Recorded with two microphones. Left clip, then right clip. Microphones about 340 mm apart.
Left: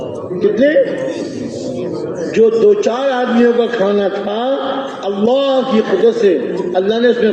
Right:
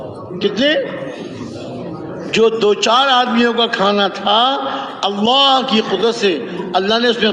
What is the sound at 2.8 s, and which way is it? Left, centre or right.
A man's voice, right.